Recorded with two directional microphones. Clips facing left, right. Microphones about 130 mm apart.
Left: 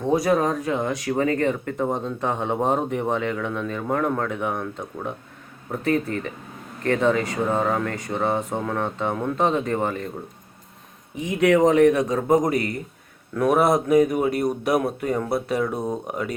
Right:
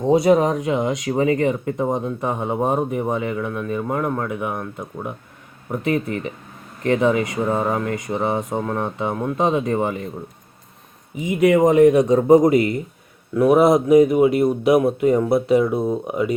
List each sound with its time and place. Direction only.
0.0 s speech: 20° right (ahead or behind)
11.2 s speech: 10° right (ahead or behind)
13.3 s speech: 10° right (ahead or behind)